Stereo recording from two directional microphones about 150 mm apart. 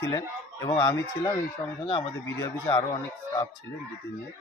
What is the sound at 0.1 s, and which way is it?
Speech, 30° left (ahead or behind).